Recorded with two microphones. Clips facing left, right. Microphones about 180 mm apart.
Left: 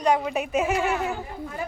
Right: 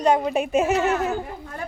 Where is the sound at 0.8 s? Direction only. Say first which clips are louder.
Right 3 dB; 15° left (ahead or behind).